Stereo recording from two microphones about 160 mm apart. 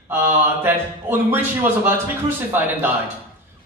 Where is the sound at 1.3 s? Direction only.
15° right (ahead or behind).